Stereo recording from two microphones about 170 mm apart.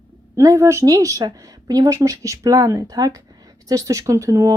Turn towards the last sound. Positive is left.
turn(degrees=-15)  # may be behind; listen again after turning